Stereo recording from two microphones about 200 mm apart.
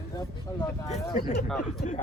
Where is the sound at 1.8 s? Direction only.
40° left (ahead or behind).